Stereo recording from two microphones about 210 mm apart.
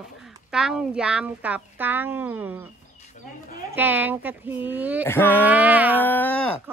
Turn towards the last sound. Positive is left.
turn(degrees=10)  # may be behind; listen again after turning